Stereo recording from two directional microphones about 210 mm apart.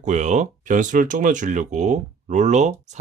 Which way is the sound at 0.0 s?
35° right (ahead or behind).